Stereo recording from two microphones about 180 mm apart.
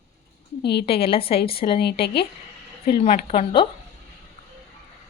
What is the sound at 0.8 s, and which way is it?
Speech, 30° left (ahead or behind).